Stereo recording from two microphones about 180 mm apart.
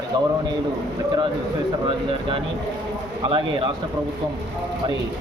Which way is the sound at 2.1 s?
30° right (ahead or behind).